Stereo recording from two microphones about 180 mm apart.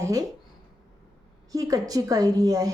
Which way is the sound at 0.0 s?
20° right (ahead or behind).